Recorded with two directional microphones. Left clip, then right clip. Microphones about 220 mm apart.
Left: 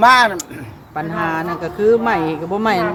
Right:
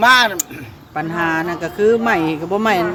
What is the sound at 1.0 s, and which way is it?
Speech, 30° right (ahead or behind).